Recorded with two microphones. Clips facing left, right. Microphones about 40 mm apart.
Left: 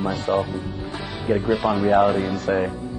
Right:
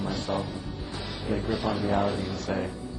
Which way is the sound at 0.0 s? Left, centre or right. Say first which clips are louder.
Left 8 dB; left.